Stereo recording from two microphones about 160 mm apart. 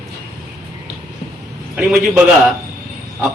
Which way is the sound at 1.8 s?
5° right (ahead or behind).